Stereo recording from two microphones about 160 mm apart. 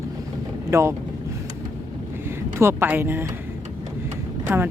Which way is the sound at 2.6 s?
15° right (ahead or behind).